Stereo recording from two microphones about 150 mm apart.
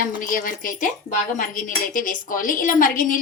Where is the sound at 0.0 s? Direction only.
65° left (ahead or behind).